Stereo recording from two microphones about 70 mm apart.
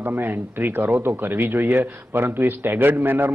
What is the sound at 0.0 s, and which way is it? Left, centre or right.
A man's voice, right.